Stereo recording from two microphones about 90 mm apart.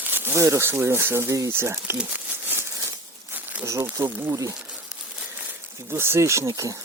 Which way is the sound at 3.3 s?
20° right (ahead or behind).